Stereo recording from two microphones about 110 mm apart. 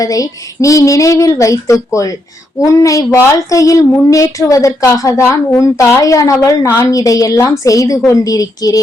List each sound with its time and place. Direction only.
0.0 s speech: 35° left (ahead or behind)